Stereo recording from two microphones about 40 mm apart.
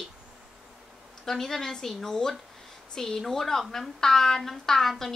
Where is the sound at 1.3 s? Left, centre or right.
Centre.